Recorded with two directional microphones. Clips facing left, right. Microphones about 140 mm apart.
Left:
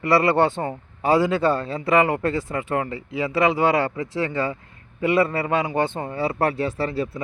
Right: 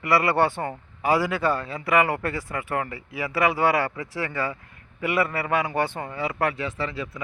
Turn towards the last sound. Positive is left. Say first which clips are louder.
# left 5 dB
turn(degrees=35)  # may be behind; listen again after turning